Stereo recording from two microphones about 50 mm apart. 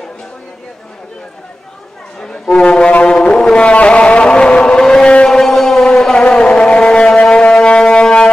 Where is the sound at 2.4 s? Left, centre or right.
Centre.